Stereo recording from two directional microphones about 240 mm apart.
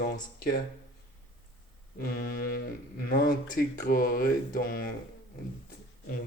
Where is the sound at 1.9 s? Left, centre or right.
Left.